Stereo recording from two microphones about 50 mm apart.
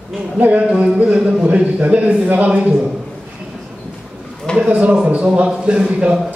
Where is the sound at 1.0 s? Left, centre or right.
Right.